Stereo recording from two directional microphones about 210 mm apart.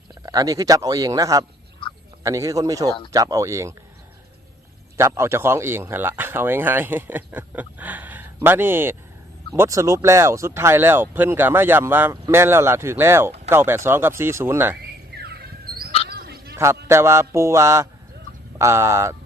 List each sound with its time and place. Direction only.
0.1 s speech: 20° right (ahead or behind)
4.9 s speech: 15° right (ahead or behind)
15.2 s squawk: 50° right (ahead or behind)
16.0 s a sound: 45° right (ahead or behind)
16.9 s speech: 15° right (ahead or behind)